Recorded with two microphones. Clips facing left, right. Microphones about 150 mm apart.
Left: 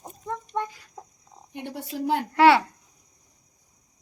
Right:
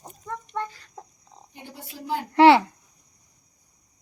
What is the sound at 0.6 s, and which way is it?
Chicken, 10° left (ahead or behind).